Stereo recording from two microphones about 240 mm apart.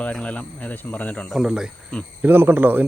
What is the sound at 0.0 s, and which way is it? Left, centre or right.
Speech, centre.